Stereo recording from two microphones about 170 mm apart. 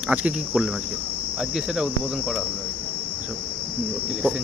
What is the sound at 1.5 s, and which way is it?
Cricket, centre (ahead or behind).